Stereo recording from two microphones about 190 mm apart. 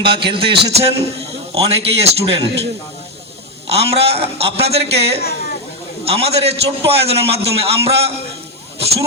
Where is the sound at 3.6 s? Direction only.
30° right (ahead or behind).